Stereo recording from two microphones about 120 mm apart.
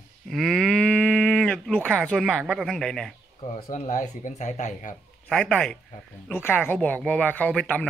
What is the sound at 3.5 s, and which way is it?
Speech, 85° left.